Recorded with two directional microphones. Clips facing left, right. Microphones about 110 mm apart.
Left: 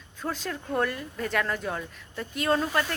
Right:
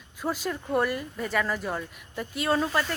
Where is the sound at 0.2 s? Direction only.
10° right (ahead or behind).